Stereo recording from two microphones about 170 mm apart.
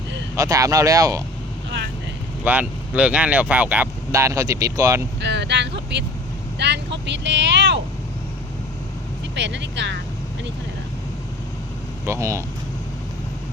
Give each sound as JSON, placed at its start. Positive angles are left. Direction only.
{"t": 0.3, "sound": "speech", "side_deg": -20}
{"t": 2.4, "sound": "speech", "side_deg": -10}
{"t": 5.2, "sound": "vehicle", "side_deg": -90}
{"t": 6.6, "sound": "speech", "side_deg": -90}
{"t": 9.3, "sound": "speech", "side_deg": -90}
{"t": 12.0, "sound": "speech", "side_deg": -15}